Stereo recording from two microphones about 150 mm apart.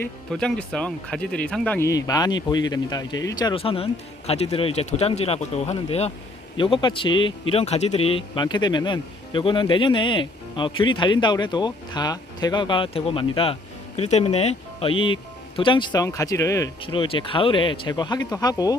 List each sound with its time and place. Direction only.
0.3 s speech: 5° left (ahead or behind)
1.9 s a man's voice: 25° left (ahead or behind)
16.8 s a man's voice: 35° left (ahead or behind)